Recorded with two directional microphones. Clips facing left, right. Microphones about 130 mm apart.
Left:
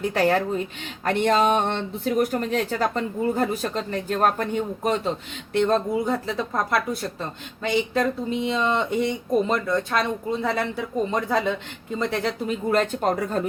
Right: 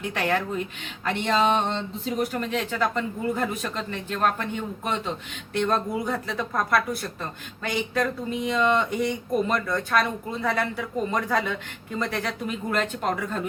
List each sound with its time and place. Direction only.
0.1 s speech: 35° left (ahead or behind)
1.0 s speech: 50° left (ahead or behind)
5.6 s speech: 25° left (ahead or behind)